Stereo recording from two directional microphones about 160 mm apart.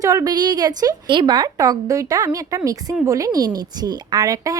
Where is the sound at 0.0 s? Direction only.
20° right (ahead or behind).